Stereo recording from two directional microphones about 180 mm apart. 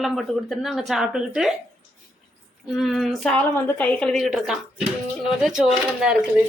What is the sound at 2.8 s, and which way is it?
A woman's voice, centre (ahead or behind).